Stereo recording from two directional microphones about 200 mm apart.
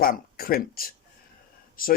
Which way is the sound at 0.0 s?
45° left (ahead or behind).